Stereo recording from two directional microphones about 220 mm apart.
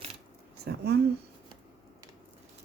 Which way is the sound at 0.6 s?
45° right (ahead or behind).